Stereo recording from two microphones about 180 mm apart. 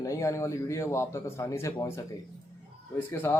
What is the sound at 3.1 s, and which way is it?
Speech, 10° left (ahead or behind).